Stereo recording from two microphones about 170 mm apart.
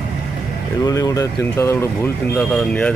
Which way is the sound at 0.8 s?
20° left (ahead or behind).